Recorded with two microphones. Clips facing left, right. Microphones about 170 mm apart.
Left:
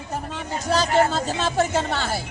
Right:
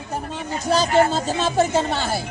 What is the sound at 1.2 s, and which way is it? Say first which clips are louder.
Speech: right 3 dB; 15° right (ahead or behind).